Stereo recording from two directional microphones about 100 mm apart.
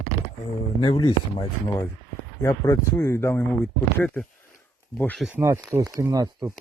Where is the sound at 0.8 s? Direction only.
50° left (ahead or behind).